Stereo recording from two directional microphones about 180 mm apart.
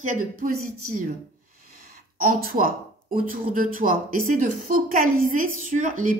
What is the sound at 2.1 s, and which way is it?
A woman's voice, 50° right (ahead or behind).